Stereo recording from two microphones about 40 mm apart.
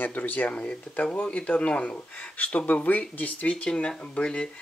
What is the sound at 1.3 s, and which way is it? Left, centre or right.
Speech, left.